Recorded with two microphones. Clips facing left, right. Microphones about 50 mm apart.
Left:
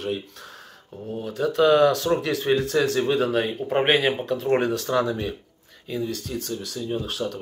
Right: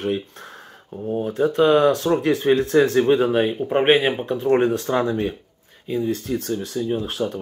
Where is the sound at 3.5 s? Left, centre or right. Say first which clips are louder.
Right 4 dB; centre.